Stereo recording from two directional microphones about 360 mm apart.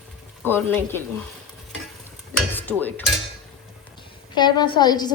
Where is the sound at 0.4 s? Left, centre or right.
Centre.